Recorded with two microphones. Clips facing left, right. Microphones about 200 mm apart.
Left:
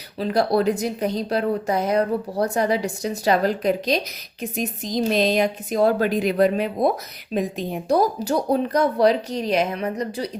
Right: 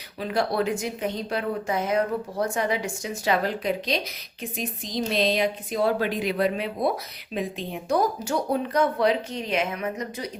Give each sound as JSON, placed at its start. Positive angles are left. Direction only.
{"t": 0.2, "sound": "a woman's voice", "side_deg": 35}